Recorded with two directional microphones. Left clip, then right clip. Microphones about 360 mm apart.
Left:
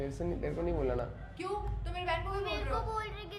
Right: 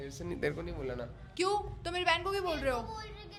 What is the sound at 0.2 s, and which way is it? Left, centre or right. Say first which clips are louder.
Speech: left 3 dB; centre.